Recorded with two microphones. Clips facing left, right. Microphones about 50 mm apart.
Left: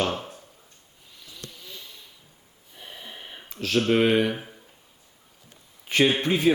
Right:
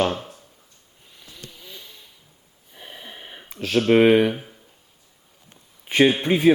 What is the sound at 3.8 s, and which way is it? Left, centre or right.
Speech, centre.